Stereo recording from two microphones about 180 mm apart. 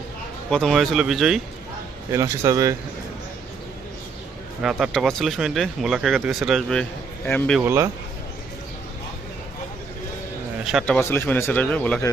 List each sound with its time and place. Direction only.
0.5 s speech: centre (ahead or behind)
2.1 s a man's voice: 20° right (ahead or behind)
4.6 s speech: 5° right (ahead or behind)
7.6 s a man's voice: 15° right (ahead or behind)
10.7 s speech: centre (ahead or behind)
10.9 s speech: 10° left (ahead or behind)